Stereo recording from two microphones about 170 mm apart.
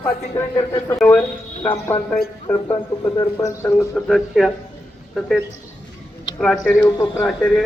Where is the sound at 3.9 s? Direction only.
Centre (ahead or behind).